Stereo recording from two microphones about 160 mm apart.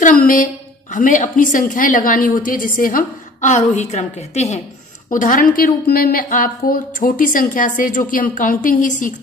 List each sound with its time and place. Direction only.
0.0 s a woman's voice: 55° left (ahead or behind)
5.1 s a woman's voice: 55° left (ahead or behind)
5.6 s a woman's voice: 70° left (ahead or behind); by 9.1 s 55° left (ahead or behind)